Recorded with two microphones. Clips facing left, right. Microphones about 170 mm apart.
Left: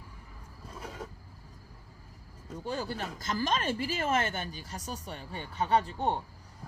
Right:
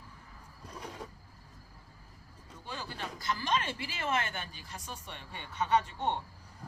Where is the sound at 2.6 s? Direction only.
40° left (ahead or behind).